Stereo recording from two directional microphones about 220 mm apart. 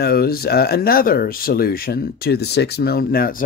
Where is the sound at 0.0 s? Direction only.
45° left (ahead or behind).